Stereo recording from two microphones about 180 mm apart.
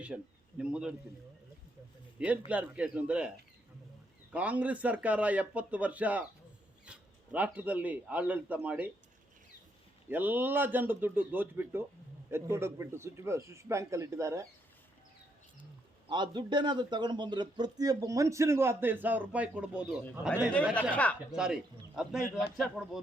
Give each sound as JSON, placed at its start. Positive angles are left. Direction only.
{"t": 0.1, "sound": "a man's voice", "side_deg": -5}
{"t": 2.1, "sound": "a man's voice", "side_deg": -5}
{"t": 10.1, "sound": "speech", "side_deg": -10}
{"t": 16.0, "sound": "a man's voice", "side_deg": -25}
{"t": 20.9, "sound": "speech", "side_deg": 5}
{"t": 21.3, "sound": "a man's voice", "side_deg": -5}